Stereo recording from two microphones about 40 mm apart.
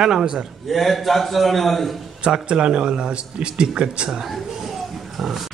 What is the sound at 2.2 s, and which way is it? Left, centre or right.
Speech, right.